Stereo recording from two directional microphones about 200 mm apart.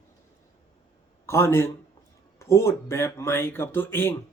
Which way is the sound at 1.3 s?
10° left (ahead or behind).